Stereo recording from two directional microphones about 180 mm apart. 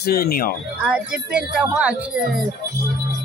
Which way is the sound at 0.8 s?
5° right (ahead or behind).